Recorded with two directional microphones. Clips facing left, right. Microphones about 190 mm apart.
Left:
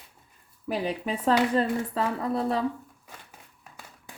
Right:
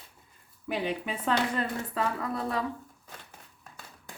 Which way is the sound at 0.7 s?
35° left (ahead or behind).